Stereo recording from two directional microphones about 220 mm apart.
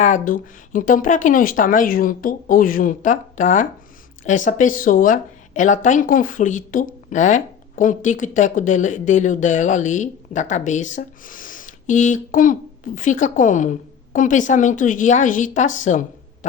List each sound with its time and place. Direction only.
0.0 s speech: 35° left (ahead or behind)